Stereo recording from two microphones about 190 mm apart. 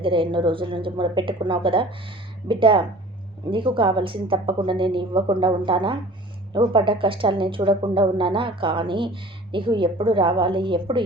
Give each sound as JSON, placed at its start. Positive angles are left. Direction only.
{"t": 0.0, "sound": "speech", "side_deg": -25}